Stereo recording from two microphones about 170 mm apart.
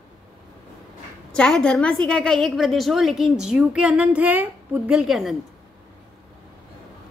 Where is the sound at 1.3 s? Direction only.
5° left (ahead or behind).